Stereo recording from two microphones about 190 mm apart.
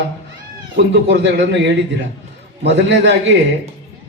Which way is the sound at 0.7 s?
65° right (ahead or behind).